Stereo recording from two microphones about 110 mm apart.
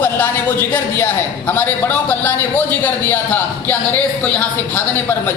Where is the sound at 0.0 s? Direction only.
20° left (ahead or behind).